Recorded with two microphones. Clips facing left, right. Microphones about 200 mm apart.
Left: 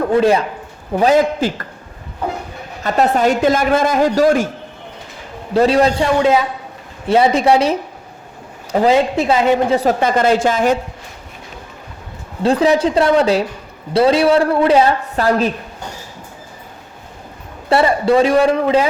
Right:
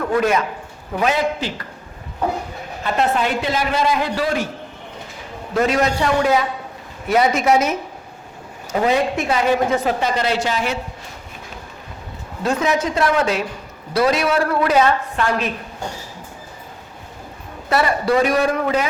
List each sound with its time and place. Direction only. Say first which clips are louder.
0.0 s a woman's voice: left 5 dB; 30° left (ahead or behind)
1.4 s a woman's voice: left 7 dB; 50° left (ahead or behind)
2.8 s a woman's voice: left 5 dB; 40° left (ahead or behind)
5.5 s a woman's voice: left 5 dB; 30° left (ahead or behind)
10.0 s a woman's voice: left 6 dB; 50° left (ahead or behind)
12.4 s a woman's voice: left 6 dB; 30° left (ahead or behind)
17.7 s a man's voice: left 5 dB; 30° left (ahead or behind)